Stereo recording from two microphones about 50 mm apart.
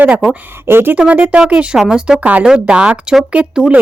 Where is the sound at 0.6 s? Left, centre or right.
Right.